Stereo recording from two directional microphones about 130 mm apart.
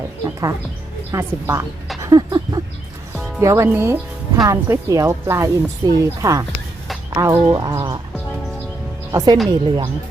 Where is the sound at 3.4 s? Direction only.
20° right (ahead or behind).